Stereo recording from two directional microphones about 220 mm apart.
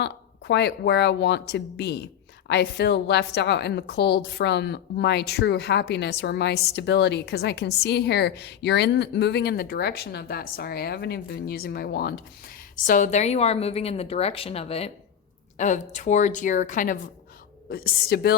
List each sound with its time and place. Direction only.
0.0 s a woman's voice: 50° left (ahead or behind)